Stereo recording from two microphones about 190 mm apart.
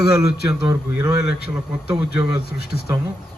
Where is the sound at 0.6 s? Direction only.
15° right (ahead or behind).